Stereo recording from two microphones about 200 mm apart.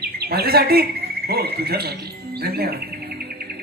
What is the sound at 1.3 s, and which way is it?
Music, 50° right (ahead or behind).